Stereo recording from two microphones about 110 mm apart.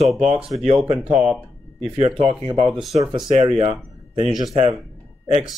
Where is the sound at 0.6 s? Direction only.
60° right (ahead or behind).